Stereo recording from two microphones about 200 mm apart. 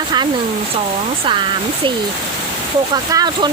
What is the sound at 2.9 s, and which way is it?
Speech, 20° right (ahead or behind).